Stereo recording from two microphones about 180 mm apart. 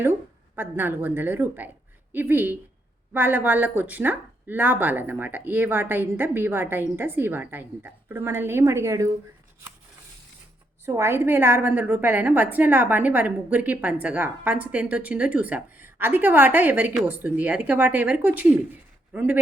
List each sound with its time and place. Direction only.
0.5 s a woman's voice: 10° right (ahead or behind)
10.8 s a woman's voice: 15° right (ahead or behind)